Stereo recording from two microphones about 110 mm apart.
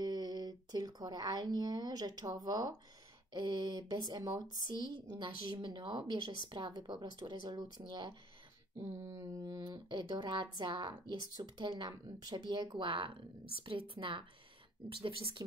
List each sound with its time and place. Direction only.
0.0 s speech: 40° right (ahead or behind)
8.9 s mantra: 20° right (ahead or behind)
9.2 s speech: 35° right (ahead or behind); by 15.4 s 50° right (ahead or behind)